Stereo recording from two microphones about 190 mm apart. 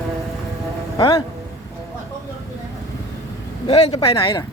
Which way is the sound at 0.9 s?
25° left (ahead or behind).